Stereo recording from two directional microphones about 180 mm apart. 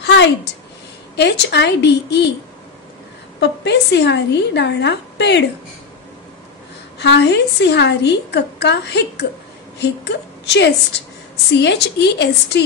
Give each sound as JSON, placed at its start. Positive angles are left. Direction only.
{"t": 0.0, "sound": "a sound", "side_deg": 70}
{"t": 1.1, "sound": "a woman's voice", "side_deg": 70}
{"t": 3.3, "sound": "a woman's voice", "side_deg": 70}
{"t": 7.0, "sound": "a woman's voice", "side_deg": 70}